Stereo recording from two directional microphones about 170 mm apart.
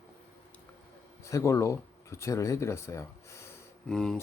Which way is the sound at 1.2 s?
15° left (ahead or behind).